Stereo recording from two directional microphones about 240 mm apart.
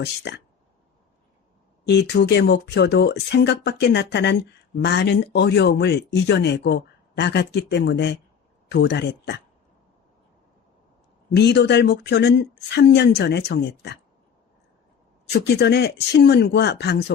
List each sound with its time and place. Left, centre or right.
0.0 s speech: left
1.9 s speech: left
11.3 s speech: left
15.3 s speech: left